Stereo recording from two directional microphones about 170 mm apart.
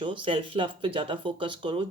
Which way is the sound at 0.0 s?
30° right (ahead or behind).